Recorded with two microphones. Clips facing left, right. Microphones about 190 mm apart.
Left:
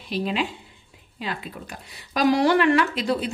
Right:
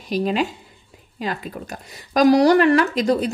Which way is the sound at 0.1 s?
45° right (ahead or behind).